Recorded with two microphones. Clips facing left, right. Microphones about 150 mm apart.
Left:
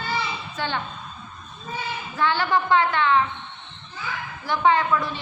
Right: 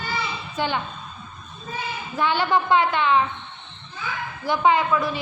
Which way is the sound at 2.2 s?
15° right (ahead or behind).